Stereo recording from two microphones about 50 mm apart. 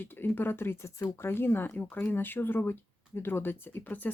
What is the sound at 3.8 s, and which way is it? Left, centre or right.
Speech, left.